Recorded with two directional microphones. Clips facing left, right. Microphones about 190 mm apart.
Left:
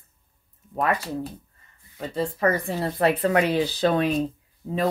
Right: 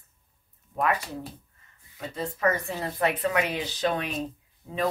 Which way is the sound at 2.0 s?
30° left (ahead or behind).